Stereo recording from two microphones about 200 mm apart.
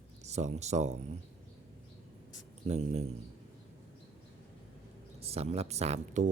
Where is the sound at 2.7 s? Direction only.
30° right (ahead or behind).